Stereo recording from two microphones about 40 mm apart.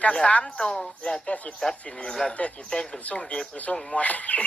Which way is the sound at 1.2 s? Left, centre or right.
Left.